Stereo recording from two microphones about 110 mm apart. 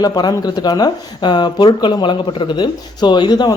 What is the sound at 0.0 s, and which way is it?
Speech, 35° left (ahead or behind).